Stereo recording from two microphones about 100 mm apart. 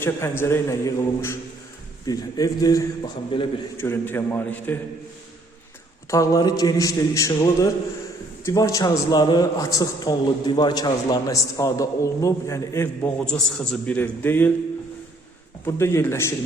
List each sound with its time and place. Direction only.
0.0 s a man's voice: 25° left (ahead or behind)
2.0 s a man's voice: 40° left (ahead or behind)
3.3 s a man's voice: 55° left (ahead or behind)
3.8 s a man's voice: 25° left (ahead or behind)
6.1 s a man's voice: 35° left (ahead or behind)
13.2 s a man's voice: 10° left (ahead or behind)
15.6 s a man's voice: 25° left (ahead or behind)